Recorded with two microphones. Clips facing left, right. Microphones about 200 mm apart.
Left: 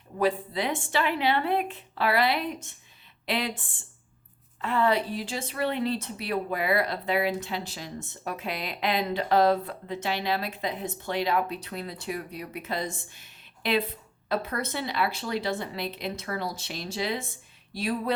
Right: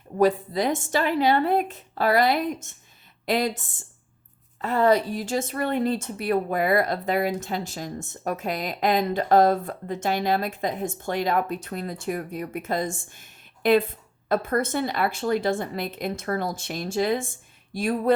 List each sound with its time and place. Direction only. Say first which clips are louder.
0.2 s a woman's voice: right 5 dB; 40° right (ahead or behind)
4.6 s a woman's voice: right 5 dB; 40° right (ahead or behind)